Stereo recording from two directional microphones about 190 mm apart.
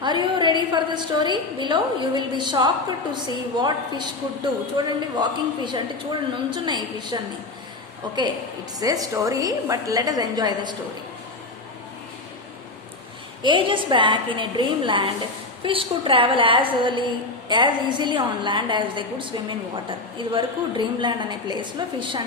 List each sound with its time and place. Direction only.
0.0 s a woman's voice: 25° right (ahead or behind)
13.4 s a woman's voice: 25° right (ahead or behind)